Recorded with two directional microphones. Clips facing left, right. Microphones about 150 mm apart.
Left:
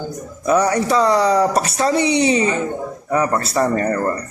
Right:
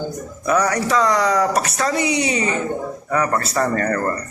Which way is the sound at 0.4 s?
30° left (ahead or behind).